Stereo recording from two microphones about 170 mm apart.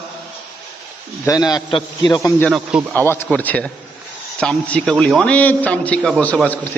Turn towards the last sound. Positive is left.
turn(degrees=10)  # may be behind; listen again after turning